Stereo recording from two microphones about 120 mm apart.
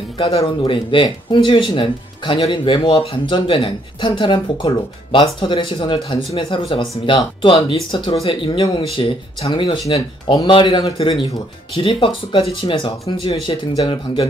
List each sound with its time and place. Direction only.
0.2 s speech: 50° left (ahead or behind)
10.3 s speech: 40° left (ahead or behind)